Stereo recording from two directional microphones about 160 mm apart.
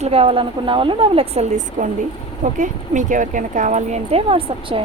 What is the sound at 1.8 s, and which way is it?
Speech, 60° right (ahead or behind).